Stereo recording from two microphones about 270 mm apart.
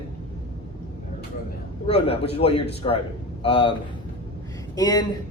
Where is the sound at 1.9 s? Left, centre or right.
Left.